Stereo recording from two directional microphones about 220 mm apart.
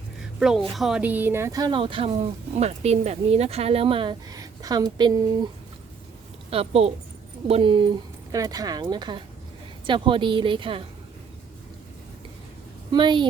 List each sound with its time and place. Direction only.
0.3 s speech: centre (ahead or behind); by 5.5 s 20° right (ahead or behind)
6.5 s speech: 25° right (ahead or behind)
12.9 s speech: 20° right (ahead or behind)